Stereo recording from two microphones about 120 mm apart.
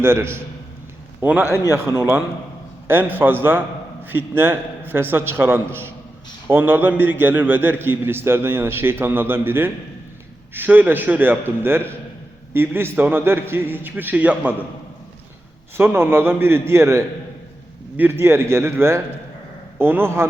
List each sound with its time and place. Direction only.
0.0 s a man's voice: 20° right (ahead or behind)
1.5 s speech: 20° left (ahead or behind)
1.7 s a man's voice: 25° right (ahead or behind)
15.8 s a man's voice: 20° right (ahead or behind)